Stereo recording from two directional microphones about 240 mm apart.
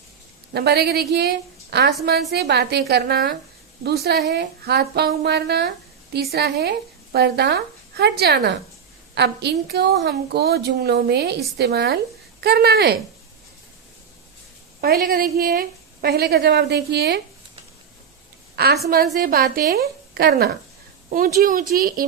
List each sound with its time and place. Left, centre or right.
0.5 s a woman's voice: right
14.8 s a woman's voice: right
18.5 s a woman's voice: right